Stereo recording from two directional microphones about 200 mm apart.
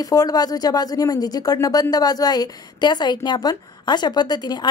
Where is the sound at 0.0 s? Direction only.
20° left (ahead or behind).